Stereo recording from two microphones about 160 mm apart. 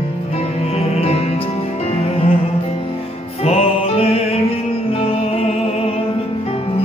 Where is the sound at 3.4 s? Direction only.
40° left (ahead or behind).